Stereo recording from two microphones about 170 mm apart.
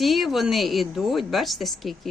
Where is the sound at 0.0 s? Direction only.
Centre (ahead or behind).